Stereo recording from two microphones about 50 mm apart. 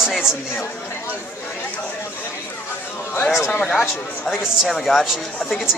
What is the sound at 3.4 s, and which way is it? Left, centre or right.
Speech, left.